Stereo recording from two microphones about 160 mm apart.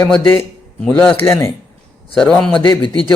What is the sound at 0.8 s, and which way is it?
A man's voice, 5° left (ahead or behind).